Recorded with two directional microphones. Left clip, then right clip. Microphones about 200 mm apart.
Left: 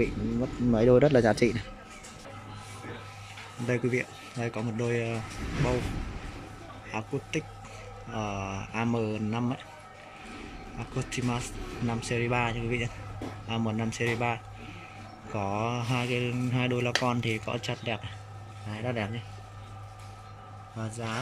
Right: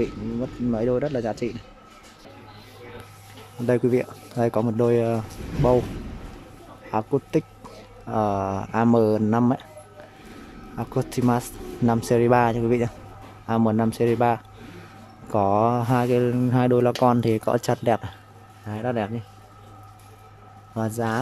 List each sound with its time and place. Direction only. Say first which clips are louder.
0.0 s speech: right 2 dB; 5° right (ahead or behind)
3.6 s speech: right 8 dB; 20° right (ahead or behind)
6.9 s speech: right 10 dB; 25° right (ahead or behind)
10.8 s speech: right 9 dB; 25° right (ahead or behind)
18.7 s a man's voice: right 7 dB; 15° right (ahead or behind)
20.7 s speech: right 10 dB; 30° right (ahead or behind)